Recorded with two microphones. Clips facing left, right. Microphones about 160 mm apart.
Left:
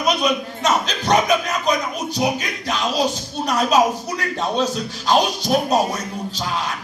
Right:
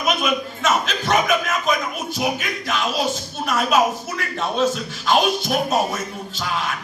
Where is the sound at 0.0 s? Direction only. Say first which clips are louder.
Left 2 dB; 35° left (ahead or behind).